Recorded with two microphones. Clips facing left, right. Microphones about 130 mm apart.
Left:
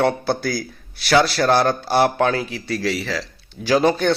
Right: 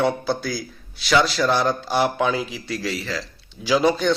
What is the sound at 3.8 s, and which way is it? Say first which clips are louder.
Speech: left 1 dB; 55° left (ahead or behind).